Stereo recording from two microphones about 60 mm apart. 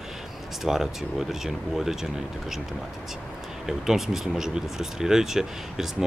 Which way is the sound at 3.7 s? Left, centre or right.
Centre.